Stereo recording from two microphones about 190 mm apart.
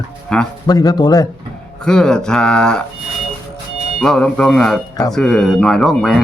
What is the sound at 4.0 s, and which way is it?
Speech, 5° left (ahead or behind).